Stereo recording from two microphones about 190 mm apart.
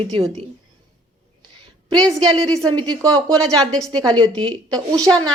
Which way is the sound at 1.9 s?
20° right (ahead or behind).